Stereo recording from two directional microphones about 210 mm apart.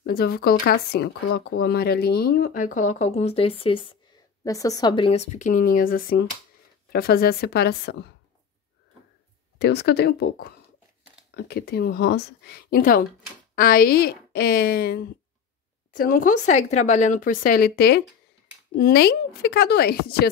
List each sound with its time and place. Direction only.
0.0 s speech: 45° left (ahead or behind)
9.6 s speech: 55° left (ahead or behind)